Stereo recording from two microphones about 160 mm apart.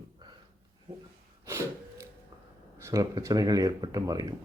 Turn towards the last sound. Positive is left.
turn(degrees=-25)  # may be behind; listen again after turning